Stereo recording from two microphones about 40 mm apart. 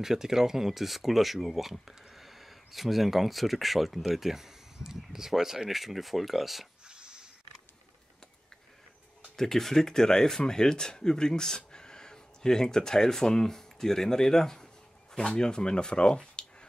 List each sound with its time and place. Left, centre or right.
0.0 s speech: centre
6.9 s a sound: right
9.4 s speech: centre